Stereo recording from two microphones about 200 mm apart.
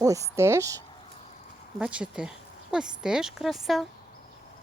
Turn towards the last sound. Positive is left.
turn(degrees=0)  # may be behind; listen again after turning